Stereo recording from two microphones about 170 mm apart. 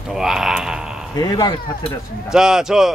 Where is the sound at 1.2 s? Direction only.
25° left (ahead or behind).